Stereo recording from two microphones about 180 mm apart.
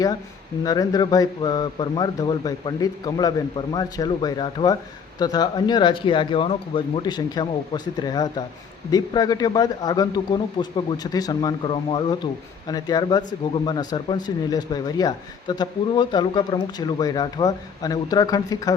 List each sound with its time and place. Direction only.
0.6 s a man's voice: 20° left (ahead or behind)